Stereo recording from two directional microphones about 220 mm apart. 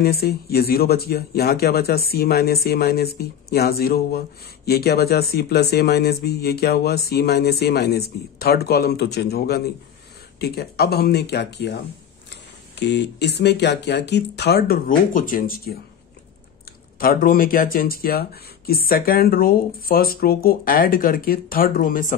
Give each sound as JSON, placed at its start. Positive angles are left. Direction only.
{"t": 0.0, "sound": "speech", "side_deg": 45}
{"t": 17.0, "sound": "speech", "side_deg": 40}